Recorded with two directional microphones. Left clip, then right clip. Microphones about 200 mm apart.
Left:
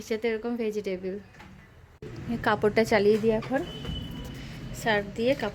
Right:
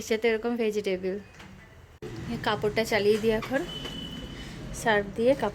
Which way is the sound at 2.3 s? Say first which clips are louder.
Left 3 dB; 25° left (ahead or behind).